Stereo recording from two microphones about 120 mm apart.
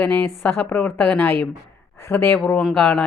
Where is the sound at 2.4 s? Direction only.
5° left (ahead or behind).